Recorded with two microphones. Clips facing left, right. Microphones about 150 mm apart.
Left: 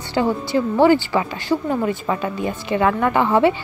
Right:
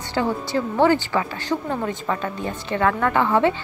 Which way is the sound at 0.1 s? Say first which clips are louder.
Left 3 dB; 15° left (ahead or behind).